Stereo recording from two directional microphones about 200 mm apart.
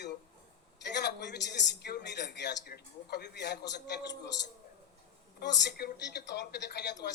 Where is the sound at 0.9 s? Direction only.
60° left (ahead or behind).